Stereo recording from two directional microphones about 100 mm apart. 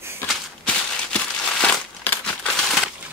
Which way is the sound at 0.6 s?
10° left (ahead or behind).